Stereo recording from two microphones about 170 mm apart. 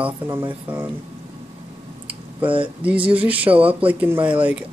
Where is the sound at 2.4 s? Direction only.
30° right (ahead or behind).